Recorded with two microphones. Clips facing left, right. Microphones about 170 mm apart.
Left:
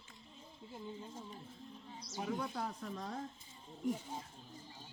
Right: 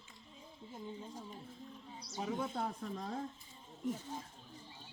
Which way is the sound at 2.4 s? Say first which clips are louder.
Right 2 dB; 25° right (ahead or behind).